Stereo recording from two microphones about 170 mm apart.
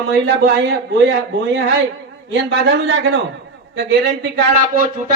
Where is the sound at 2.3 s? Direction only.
90° right.